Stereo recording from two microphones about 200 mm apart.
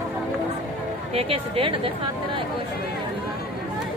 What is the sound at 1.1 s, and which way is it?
Speech, 30° right (ahead or behind).